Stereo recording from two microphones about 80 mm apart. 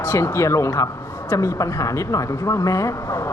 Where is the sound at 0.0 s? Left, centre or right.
Left.